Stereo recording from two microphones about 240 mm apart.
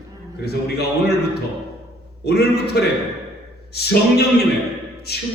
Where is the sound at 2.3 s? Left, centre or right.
Left.